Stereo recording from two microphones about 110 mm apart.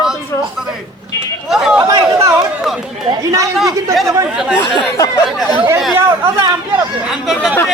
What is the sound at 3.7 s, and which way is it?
Chatter, 30° right (ahead or behind).